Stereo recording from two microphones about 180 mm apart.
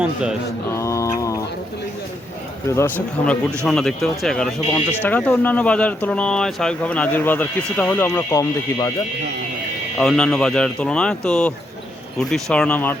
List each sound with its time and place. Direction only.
0.0 s speech: 5° right (ahead or behind)
0.7 s a sound: 15° left (ahead or behind)
2.6 s speech: 15° left (ahead or behind)
10.0 s speech: 5° left (ahead or behind)